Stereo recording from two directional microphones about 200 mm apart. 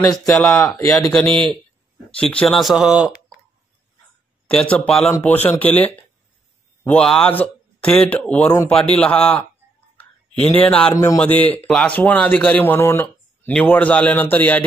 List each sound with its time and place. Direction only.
0.4 s speech: 15° left (ahead or behind)
1.1 s speech: 5° left (ahead or behind)
4.5 s speech: 5° left (ahead or behind)
9.9 s a sound: 10° left (ahead or behind)
11.1 s speech: 10° left (ahead or behind)